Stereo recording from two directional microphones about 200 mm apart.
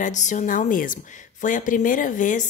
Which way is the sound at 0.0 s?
40° left (ahead or behind).